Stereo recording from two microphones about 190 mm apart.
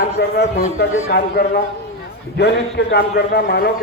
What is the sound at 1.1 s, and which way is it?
A man's voice, 55° left (ahead or behind).